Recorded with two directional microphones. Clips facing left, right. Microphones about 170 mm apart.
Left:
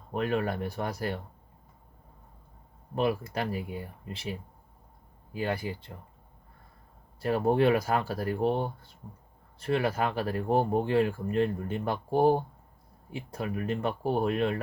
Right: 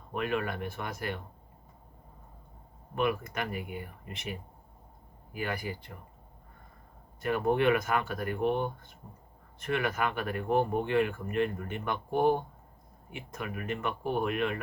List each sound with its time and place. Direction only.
0.1 s speech: 35° left (ahead or behind)
2.9 s speech: 30° left (ahead or behind)
7.2 s speech: 35° left (ahead or behind)